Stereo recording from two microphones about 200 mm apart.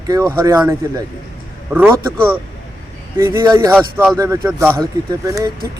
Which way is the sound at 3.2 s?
15° right (ahead or behind).